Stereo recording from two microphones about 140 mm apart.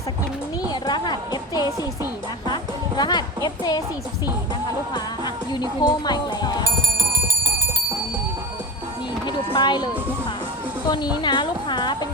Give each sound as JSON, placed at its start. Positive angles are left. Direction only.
{"t": 0.7, "sound": "speech", "side_deg": 30}
{"t": 3.0, "sound": "speech", "side_deg": 30}
{"t": 4.9, "sound": "speech", "side_deg": 30}
{"t": 9.2, "sound": "speech", "side_deg": 30}